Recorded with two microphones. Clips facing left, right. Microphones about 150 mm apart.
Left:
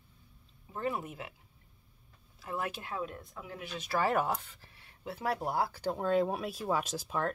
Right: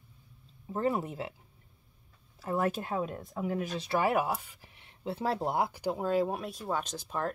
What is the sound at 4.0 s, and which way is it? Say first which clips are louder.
Speech: even; 10° right (ahead or behind).